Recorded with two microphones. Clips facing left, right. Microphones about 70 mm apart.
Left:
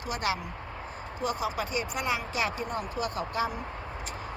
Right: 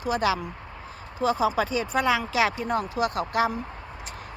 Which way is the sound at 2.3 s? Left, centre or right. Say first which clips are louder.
Right 7 dB; right.